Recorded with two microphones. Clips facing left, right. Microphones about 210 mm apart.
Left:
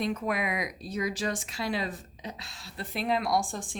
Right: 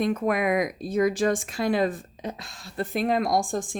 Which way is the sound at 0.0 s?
50° right (ahead or behind).